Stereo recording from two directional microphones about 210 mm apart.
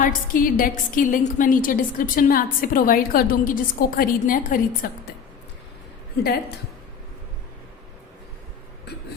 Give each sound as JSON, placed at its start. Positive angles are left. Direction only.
{"t": 0.0, "sound": "a woman's voice", "side_deg": 40}